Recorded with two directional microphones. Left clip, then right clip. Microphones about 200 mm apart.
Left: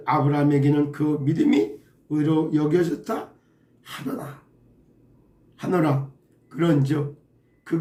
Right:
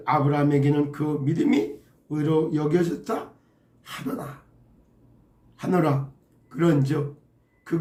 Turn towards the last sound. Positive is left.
turn(degrees=10)  # may be behind; listen again after turning